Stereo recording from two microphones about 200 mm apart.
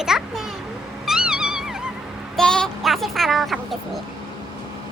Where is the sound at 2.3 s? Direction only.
5° left (ahead or behind).